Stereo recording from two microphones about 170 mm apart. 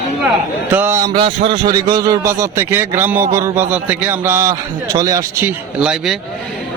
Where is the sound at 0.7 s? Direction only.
15° right (ahead or behind).